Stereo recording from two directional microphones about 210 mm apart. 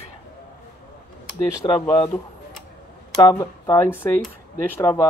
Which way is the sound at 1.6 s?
20° left (ahead or behind).